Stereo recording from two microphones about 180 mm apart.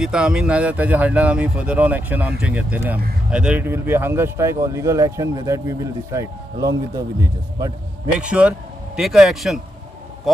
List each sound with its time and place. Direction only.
0.0 s a man's voice: 5° right (ahead or behind); by 7.7 s 20° right (ahead or behind)
8.2 s a man's voice: 5° right (ahead or behind)